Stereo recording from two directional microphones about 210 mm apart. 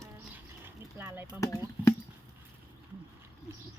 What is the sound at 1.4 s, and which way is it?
Speech, 15° left (ahead or behind).